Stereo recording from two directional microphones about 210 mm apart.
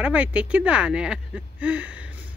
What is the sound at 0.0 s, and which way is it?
Speech, 5° right (ahead or behind).